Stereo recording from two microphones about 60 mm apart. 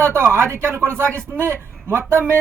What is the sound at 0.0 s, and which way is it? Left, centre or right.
A man's voice, right.